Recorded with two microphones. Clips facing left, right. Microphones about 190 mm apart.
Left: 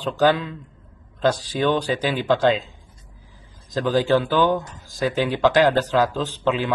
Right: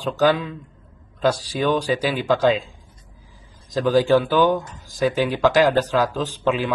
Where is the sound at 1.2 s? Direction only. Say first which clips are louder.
Even; 10° right (ahead or behind).